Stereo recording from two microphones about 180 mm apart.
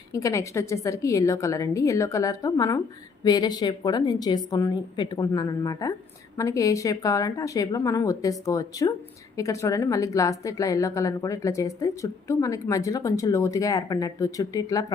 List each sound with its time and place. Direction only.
0.1 s a woman's voice: 15° left (ahead or behind)